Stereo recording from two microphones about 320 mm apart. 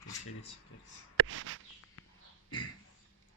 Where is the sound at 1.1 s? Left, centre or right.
Right.